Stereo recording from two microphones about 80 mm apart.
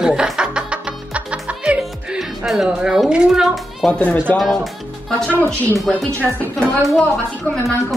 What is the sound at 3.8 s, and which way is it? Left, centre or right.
Speech, centre.